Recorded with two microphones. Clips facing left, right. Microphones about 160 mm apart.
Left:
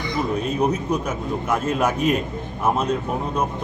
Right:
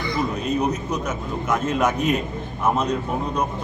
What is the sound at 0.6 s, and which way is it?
A man's voice, 10° left (ahead or behind).